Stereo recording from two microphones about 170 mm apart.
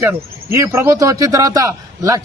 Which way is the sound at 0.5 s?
20° right (ahead or behind).